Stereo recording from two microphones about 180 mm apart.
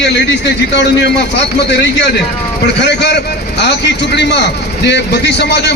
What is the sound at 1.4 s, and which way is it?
A man's voice, 75° left (ahead or behind).